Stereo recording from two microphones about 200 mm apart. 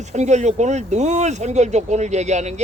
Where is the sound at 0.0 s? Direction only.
35° right (ahead or behind).